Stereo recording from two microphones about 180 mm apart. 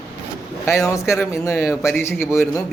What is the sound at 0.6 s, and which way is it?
Speech, 15° left (ahead or behind).